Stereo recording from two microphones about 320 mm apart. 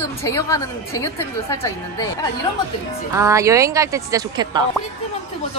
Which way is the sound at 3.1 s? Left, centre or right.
Centre.